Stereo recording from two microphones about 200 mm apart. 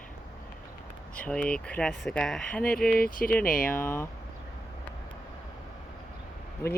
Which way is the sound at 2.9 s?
45° left (ahead or behind).